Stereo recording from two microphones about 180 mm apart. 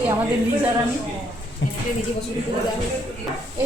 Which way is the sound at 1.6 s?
90° left.